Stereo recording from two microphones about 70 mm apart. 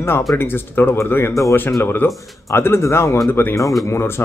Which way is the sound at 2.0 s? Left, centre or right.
Left.